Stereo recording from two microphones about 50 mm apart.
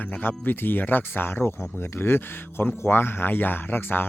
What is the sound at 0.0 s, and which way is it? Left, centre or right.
Speech, left.